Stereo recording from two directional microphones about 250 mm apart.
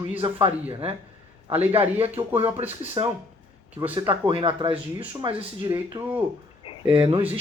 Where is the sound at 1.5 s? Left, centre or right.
Centre.